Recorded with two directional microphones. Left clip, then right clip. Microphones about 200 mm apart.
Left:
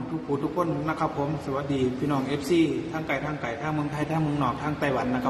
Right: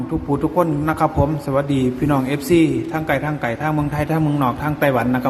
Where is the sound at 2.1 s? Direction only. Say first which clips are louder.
Right 8 dB; 50° right (ahead or behind).